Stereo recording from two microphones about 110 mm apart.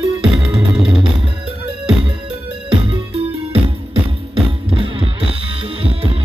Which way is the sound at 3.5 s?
55° right (ahead or behind).